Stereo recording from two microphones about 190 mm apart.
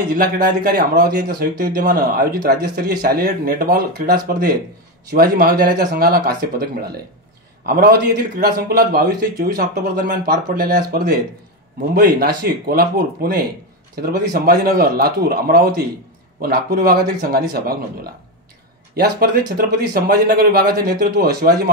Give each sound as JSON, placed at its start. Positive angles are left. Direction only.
{"t": 0.1, "sound": "a man's voice", "side_deg": -55}